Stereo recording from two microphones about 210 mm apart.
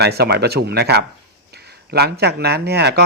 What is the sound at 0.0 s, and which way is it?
Speech, 50° right (ahead or behind).